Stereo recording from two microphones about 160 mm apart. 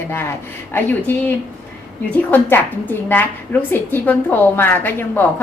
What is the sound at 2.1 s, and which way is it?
A woman's voice, 10° left (ahead or behind).